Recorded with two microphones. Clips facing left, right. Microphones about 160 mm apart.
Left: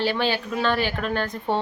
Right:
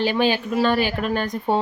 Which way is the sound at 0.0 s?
15° right (ahead or behind).